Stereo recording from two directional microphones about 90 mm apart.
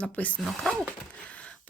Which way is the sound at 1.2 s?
15° left (ahead or behind).